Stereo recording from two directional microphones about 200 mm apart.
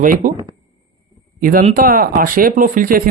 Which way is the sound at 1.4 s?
45° right (ahead or behind).